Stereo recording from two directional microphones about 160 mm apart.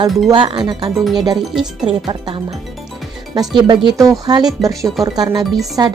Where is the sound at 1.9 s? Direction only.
30° right (ahead or behind).